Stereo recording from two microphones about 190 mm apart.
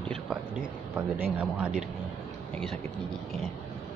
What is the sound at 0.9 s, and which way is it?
Speech, 10° right (ahead or behind).